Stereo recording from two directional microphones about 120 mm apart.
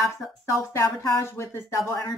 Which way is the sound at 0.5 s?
25° left (ahead or behind).